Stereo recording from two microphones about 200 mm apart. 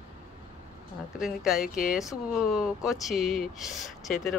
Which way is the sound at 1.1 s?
Centre (ahead or behind).